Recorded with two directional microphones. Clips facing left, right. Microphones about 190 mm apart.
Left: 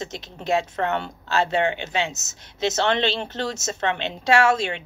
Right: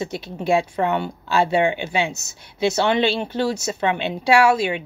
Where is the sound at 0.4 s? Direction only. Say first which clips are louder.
Right 3 dB; 15° right (ahead or behind).